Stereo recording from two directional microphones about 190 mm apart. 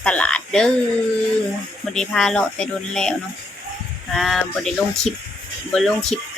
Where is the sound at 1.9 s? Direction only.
5° left (ahead or behind).